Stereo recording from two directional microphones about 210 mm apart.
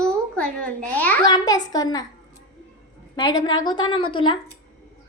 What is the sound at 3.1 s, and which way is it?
A woman's voice, 20° left (ahead or behind).